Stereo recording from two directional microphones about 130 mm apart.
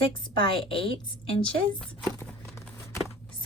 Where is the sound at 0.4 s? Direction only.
45° left (ahead or behind).